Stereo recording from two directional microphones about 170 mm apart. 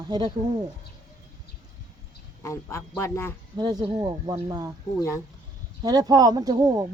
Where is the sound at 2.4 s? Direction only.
15° left (ahead or behind).